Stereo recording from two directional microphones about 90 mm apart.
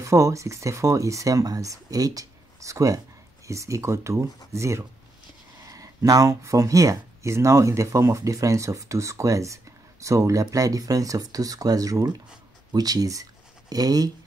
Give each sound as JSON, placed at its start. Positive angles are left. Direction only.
{"t": 0.0, "sound": "speech", "side_deg": -35}